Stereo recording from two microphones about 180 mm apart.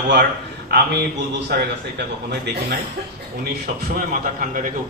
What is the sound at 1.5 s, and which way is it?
Speech, 65° right (ahead or behind).